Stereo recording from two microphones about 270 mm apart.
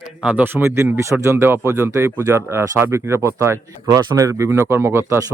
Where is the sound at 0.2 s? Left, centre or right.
Centre.